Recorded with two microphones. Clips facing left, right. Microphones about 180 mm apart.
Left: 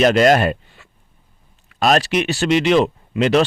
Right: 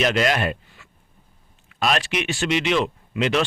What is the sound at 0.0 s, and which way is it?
Speech, 40° left (ahead or behind).